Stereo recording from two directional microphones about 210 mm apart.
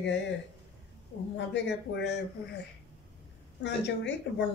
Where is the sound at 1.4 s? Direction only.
55° left (ahead or behind).